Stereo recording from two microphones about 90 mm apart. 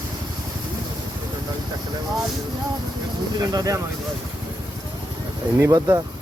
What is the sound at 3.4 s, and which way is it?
Speech, 45° right (ahead or behind).